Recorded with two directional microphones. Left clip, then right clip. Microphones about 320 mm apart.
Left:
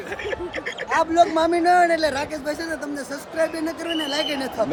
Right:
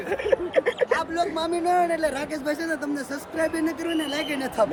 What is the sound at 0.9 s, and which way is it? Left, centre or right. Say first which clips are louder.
A man's voice: left 7 dB; left.